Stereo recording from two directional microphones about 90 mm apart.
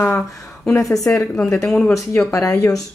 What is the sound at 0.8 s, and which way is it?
Speech, 40° left (ahead or behind).